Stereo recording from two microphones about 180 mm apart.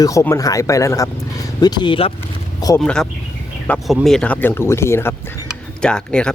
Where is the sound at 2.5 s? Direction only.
20° left (ahead or behind).